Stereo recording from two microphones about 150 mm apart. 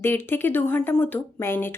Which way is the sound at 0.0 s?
15° left (ahead or behind).